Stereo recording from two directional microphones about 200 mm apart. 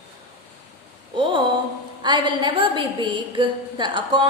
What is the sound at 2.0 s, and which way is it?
A woman's voice, 20° right (ahead or behind).